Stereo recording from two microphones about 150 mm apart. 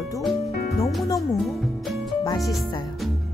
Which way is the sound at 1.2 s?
Centre (ahead or behind).